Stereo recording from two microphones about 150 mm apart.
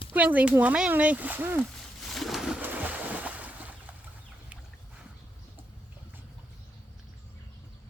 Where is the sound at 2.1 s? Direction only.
Centre (ahead or behind).